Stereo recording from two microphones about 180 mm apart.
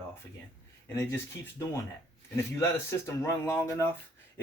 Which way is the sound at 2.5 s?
15° left (ahead or behind).